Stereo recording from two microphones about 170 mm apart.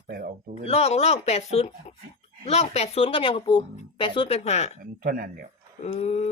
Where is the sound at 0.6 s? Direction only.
40° left (ahead or behind).